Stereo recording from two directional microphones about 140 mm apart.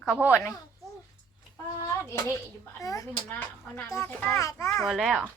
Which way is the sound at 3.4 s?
10° left (ahead or behind).